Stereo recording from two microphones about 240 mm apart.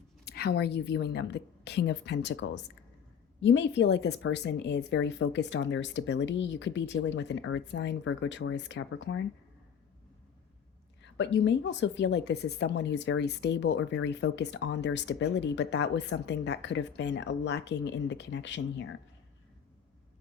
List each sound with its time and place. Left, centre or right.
0.3 s speech: left
11.2 s speech: left